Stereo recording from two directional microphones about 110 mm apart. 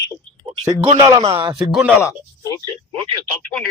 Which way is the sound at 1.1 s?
60° right (ahead or behind).